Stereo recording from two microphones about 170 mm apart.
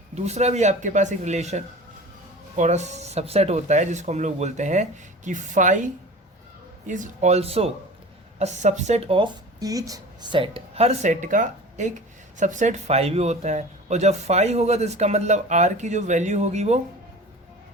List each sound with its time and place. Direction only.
0.1 s speech: 40° right (ahead or behind)